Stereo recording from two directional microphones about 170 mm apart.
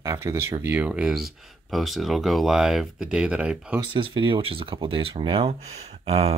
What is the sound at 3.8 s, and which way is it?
Speech, 30° right (ahead or behind).